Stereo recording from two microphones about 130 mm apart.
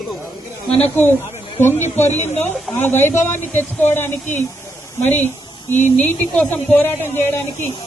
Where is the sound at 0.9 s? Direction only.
15° left (ahead or behind).